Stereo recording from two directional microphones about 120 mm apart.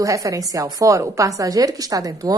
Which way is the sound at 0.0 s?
30° right (ahead or behind).